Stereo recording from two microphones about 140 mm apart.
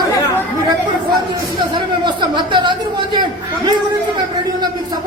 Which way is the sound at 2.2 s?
35° right (ahead or behind).